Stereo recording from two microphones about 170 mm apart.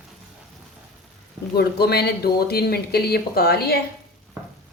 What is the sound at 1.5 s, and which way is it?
Speech, 70° left (ahead or behind).